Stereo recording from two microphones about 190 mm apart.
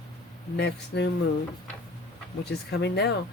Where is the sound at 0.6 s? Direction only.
65° left (ahead or behind).